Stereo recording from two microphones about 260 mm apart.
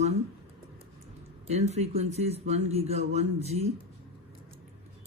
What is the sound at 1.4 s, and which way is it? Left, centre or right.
Speech, right.